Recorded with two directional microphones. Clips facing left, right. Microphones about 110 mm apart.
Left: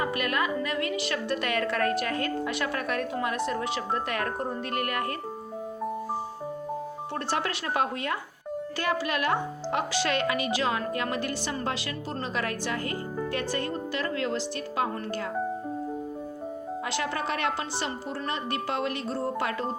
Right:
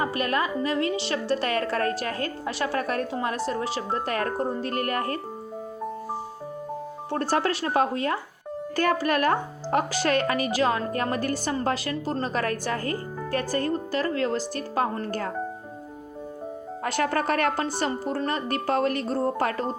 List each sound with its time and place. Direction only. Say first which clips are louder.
0.0 s a woman's voice: right 2 dB; 35° right (ahead or behind)
7.1 s a woman's voice: right 6 dB; 40° right (ahead or behind)
8.7 s a woman's voice: right 6 dB; 45° right (ahead or behind)
16.8 s a woman's voice: right 7 dB; 45° right (ahead or behind)